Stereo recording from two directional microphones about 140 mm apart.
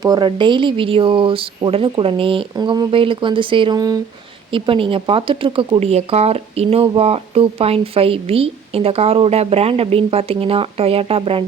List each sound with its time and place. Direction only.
0.0 s speech: 30° right (ahead or behind)
4.5 s speech: 40° right (ahead or behind)